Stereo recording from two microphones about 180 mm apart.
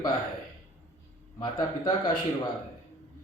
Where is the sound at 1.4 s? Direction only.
25° left (ahead or behind).